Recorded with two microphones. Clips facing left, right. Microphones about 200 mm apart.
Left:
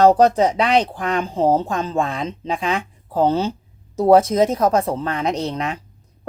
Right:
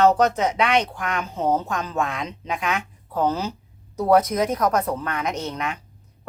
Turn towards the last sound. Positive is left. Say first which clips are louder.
# left 5 dB
turn(degrees=35)  # may be behind; listen again after turning